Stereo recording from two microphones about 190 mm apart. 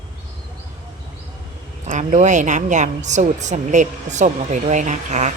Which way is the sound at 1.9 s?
40° right (ahead or behind).